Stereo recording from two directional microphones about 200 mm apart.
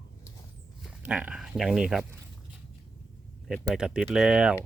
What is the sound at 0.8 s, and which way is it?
Speech, 5° right (ahead or behind).